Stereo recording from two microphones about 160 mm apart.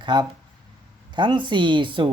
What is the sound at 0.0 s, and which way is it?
Speech, 30° right (ahead or behind).